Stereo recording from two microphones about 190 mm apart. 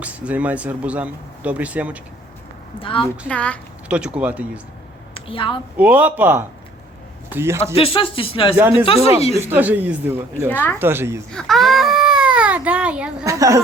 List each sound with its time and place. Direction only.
0.0 s speech: 5° right (ahead or behind)
3.0 s speech: 5° left (ahead or behind)
3.8 s speech: 5° right (ahead or behind)
5.1 s a woman's voice: 25° left (ahead or behind)
5.7 s speech: 10° right (ahead or behind)
7.8 s speech: 30° left (ahead or behind)
9.5 s speech: 10° right (ahead or behind)
10.5 s speech: 10° left (ahead or behind)
10.8 s speech: 10° right (ahead or behind)
11.3 s baby cry: centre (ahead or behind)
13.2 s speech: 15° right (ahead or behind)